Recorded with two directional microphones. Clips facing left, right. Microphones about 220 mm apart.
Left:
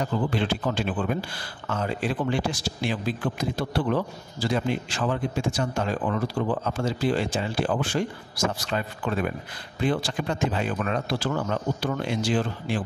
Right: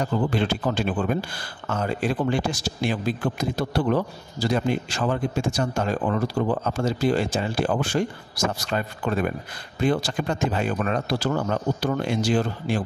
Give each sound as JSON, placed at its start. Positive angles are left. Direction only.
{"t": 0.3, "sound": "speech", "side_deg": -45}